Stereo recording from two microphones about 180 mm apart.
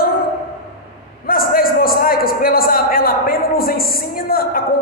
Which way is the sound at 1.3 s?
55° left (ahead or behind).